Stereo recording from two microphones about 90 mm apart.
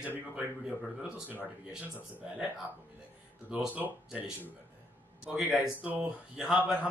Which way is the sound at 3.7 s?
15° right (ahead or behind).